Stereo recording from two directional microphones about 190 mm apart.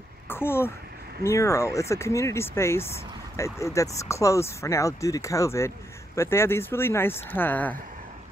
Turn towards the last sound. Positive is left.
turn(degrees=10)  # may be behind; listen again after turning